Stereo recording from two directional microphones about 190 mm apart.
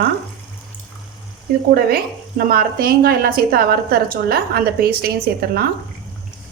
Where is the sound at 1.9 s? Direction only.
50° right (ahead or behind).